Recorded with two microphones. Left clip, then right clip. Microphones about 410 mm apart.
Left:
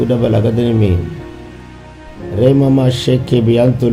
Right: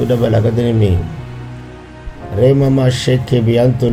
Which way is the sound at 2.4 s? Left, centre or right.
Centre.